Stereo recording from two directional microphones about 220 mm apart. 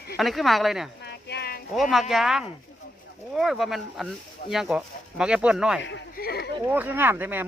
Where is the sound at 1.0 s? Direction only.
50° left (ahead or behind).